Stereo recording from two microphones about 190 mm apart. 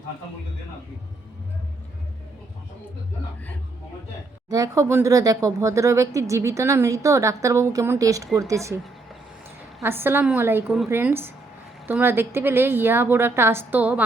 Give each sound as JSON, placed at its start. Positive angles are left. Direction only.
{"t": 4.4, "sound": "speech", "side_deg": -20}
{"t": 9.8, "sound": "speech", "side_deg": -10}